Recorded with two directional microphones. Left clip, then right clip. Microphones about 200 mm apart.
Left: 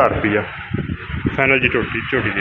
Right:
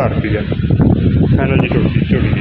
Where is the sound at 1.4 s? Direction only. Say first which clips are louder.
Left 5 dB; 15° right (ahead or behind).